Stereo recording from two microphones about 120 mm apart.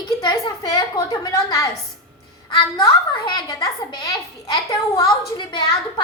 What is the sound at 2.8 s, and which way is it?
A child's voice, 35° left (ahead or behind).